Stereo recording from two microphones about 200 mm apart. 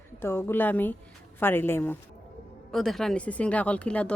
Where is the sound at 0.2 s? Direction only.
10° left (ahead or behind).